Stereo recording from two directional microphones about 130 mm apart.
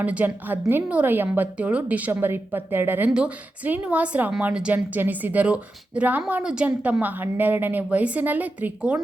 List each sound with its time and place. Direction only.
0.0 s a woman's voice: 10° right (ahead or behind)